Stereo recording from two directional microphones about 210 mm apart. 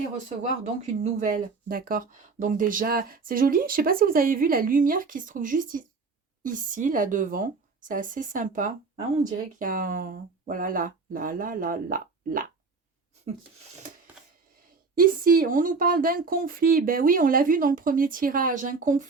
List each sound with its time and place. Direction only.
0.3 s speech: 35° right (ahead or behind)
14.9 s speech: 45° right (ahead or behind)